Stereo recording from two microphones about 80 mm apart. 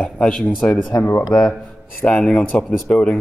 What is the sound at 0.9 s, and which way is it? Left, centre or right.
Speech, left.